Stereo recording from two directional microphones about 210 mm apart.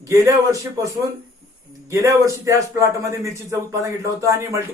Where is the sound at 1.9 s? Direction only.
15° right (ahead or behind).